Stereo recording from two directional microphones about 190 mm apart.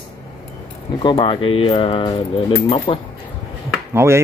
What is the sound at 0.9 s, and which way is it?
Speech, 25° left (ahead or behind).